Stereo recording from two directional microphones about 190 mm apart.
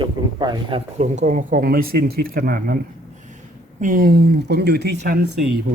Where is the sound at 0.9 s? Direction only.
40° right (ahead or behind).